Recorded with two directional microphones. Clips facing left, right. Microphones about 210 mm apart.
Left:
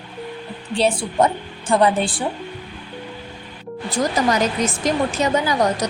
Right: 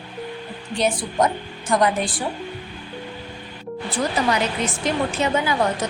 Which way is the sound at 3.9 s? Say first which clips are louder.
Left 3 dB; 45° left (ahead or behind).